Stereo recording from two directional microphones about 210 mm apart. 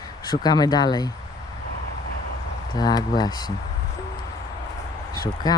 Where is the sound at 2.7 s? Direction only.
20° left (ahead or behind).